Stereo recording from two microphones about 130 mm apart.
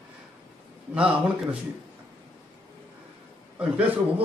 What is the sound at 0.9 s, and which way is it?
Speech, 10° right (ahead or behind).